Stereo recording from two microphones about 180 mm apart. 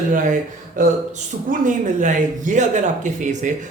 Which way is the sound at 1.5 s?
45° right (ahead or behind).